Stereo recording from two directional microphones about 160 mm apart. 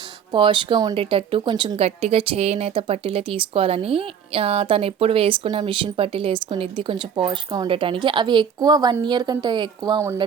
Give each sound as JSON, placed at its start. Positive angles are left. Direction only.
{"t": 0.3, "sound": "a woman's voice", "side_deg": -30}